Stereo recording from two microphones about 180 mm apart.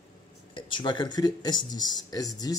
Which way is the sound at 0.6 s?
25° left (ahead or behind).